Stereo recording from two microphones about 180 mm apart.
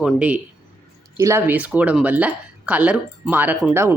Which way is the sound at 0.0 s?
5° right (ahead or behind).